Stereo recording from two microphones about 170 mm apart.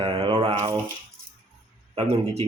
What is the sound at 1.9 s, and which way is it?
Speech, 35° right (ahead or behind).